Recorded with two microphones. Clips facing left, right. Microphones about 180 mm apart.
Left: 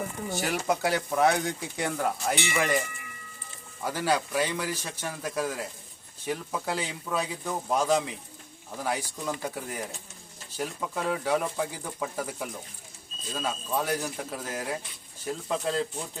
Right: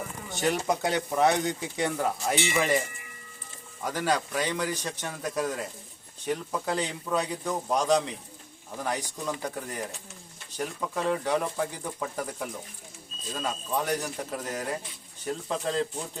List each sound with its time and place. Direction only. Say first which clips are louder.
0.3 s speech: right 2 dB; centre (ahead or behind)
3.8 s speech: even; 10° left (ahead or behind)